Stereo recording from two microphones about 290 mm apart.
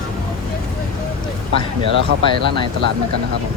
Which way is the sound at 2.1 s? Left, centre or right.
Right.